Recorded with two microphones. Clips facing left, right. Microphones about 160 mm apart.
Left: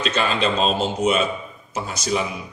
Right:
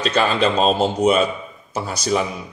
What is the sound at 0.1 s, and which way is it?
A man's voice, 45° right (ahead or behind).